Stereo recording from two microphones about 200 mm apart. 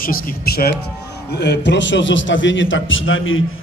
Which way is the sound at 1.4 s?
60° left (ahead or behind).